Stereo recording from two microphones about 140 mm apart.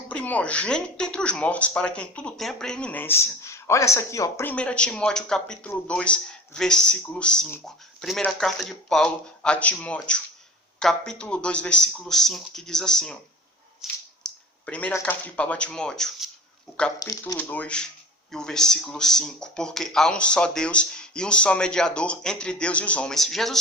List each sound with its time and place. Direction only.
0.1 s speech: 10° left (ahead or behind)
4.5 s speech: 10° left (ahead or behind)
13.8 s squish: 5° right (ahead or behind)
14.3 s a sound: 10° left (ahead or behind)
14.9 s speech: 10° left (ahead or behind)
17.0 s speech: 25° left (ahead or behind)
17.3 s speech: 10° left (ahead or behind)